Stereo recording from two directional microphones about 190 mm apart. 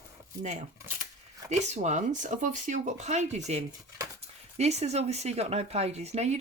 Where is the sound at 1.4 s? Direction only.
35° right (ahead or behind).